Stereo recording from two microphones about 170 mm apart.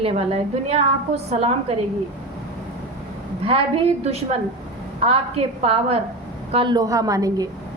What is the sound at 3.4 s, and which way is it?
Speech, 35° right (ahead or behind).